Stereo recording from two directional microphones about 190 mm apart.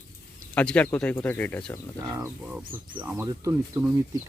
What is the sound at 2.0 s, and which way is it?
Speech, 20° right (ahead or behind).